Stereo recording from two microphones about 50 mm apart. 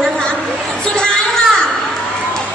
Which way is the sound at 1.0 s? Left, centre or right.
Centre.